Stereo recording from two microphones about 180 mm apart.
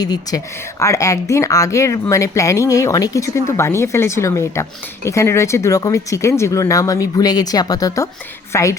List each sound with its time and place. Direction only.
0.0 s speech: 20° left (ahead or behind)